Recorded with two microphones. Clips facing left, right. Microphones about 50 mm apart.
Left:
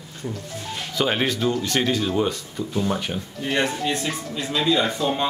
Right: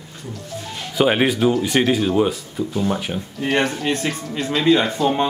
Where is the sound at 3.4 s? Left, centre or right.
Right.